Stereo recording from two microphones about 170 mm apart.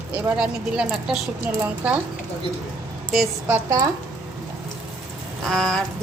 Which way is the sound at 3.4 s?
15° right (ahead or behind).